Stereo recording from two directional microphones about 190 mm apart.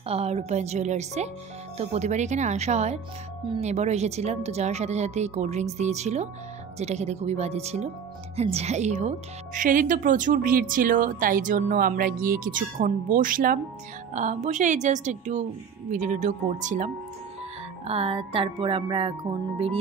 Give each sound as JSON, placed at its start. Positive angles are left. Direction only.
{"t": 0.1, "sound": "a woman's voice", "side_deg": -35}
{"t": 17.8, "sound": "music", "side_deg": -30}